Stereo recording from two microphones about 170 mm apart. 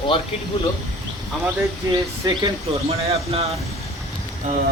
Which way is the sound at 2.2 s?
30° right (ahead or behind).